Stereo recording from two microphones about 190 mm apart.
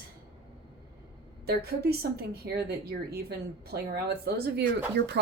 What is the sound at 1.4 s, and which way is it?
A woman's voice, 55° right (ahead or behind).